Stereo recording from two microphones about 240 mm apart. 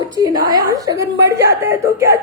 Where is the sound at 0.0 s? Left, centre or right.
Centre.